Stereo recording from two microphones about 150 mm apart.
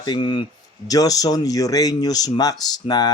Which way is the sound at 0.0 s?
30° left (ahead or behind).